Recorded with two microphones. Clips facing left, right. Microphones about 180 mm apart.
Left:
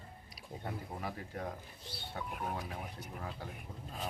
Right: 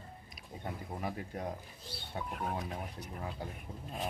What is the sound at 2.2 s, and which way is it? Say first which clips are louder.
Speech: right 3 dB; centre (ahead or behind).